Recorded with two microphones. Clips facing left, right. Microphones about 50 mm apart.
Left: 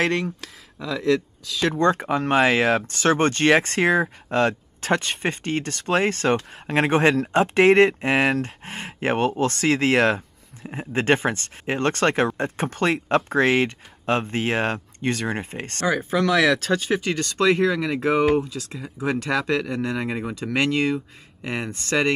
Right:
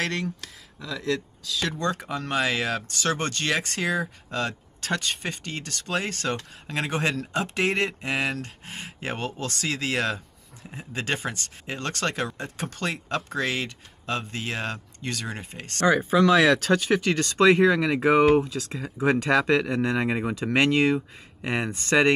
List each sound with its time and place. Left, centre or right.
0.0 s speech: left
17.2 s speech: centre